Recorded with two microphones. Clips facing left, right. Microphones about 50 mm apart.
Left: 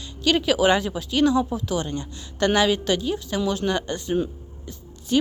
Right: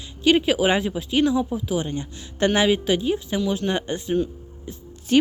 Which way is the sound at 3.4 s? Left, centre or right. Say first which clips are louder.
Left 1 dB; centre.